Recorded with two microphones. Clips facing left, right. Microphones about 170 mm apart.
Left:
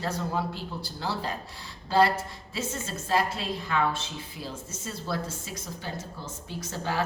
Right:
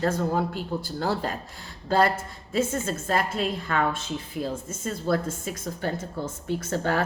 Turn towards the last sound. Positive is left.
turn(degrees=-55)  # may be behind; listen again after turning